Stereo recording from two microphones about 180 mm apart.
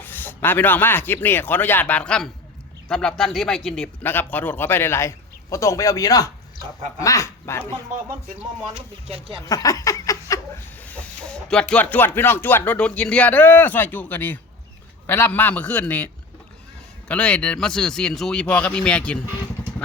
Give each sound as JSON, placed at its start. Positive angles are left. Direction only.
{"t": 0.0, "sound": "a man's voice", "side_deg": 10}
{"t": 8.7, "sound": "speech", "side_deg": -35}
{"t": 9.5, "sound": "speech", "side_deg": 20}
{"t": 10.8, "sound": "a man's voice", "side_deg": 5}
{"t": 17.1, "sound": "speech", "side_deg": 5}